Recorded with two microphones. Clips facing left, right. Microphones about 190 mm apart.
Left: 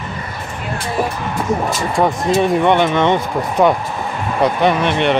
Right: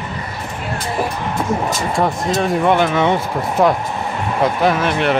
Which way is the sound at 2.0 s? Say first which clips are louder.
Left 4 dB; 5° left (ahead or behind).